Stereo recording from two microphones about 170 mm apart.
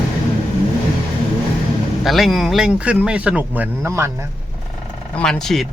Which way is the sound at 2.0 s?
Centre (ahead or behind).